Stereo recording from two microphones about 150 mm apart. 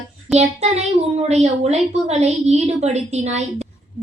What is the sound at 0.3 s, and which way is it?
Speech, 45° right (ahead or behind).